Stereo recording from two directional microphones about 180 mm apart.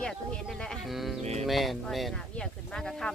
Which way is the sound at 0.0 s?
5° left (ahead or behind).